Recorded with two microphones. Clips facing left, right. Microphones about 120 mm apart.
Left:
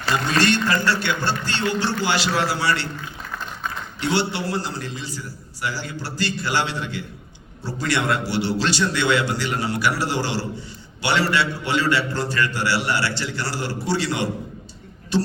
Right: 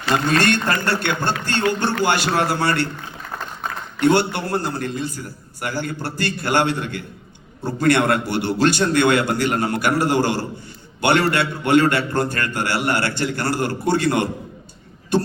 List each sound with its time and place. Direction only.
0.1 s a man's voice: 55° right (ahead or behind)
4.0 s a man's voice: 50° right (ahead or behind)